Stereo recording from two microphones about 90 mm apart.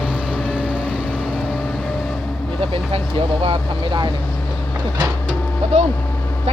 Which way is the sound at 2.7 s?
90° right.